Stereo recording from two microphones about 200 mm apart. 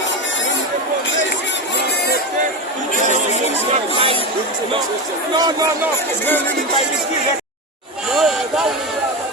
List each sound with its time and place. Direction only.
3.7 s speech: 30° right (ahead or behind)
5.3 s speech: 20° right (ahead or behind)
8.1 s a sound: centre (ahead or behind)